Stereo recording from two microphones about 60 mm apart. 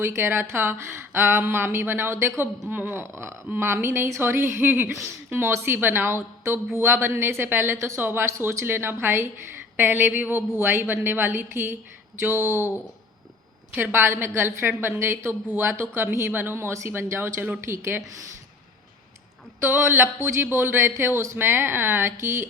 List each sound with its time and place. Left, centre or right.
0.2 s speech: right
2.6 s speech: right
3.0 s speech: right
13.7 s speech: right
19.6 s speech: right